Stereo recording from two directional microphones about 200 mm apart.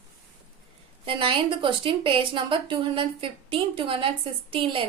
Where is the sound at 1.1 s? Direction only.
25° right (ahead or behind).